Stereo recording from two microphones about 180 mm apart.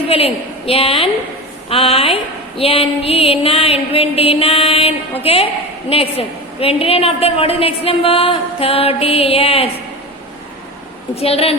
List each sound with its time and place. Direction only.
0.1 s a woman's voice: 30° left (ahead or behind)
11.1 s a woman's voice: 35° left (ahead or behind)